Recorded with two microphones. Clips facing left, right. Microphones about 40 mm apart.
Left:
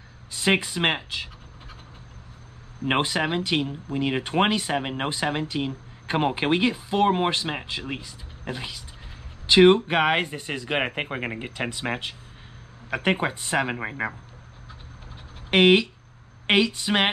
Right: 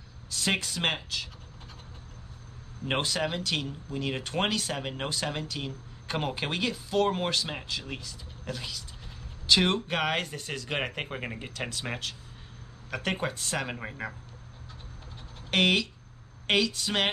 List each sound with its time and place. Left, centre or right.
0.3 s speech: left
2.8 s speech: left
15.5 s speech: left